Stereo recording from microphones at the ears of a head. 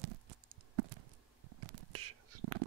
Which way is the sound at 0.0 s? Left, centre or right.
Right.